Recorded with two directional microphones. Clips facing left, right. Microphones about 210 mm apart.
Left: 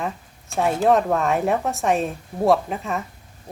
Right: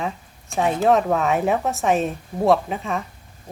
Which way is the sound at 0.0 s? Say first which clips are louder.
Right 1 dB; centre (ahead or behind).